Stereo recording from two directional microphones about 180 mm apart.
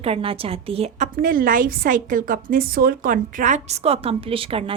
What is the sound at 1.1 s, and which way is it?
A woman's voice, 50° right (ahead or behind).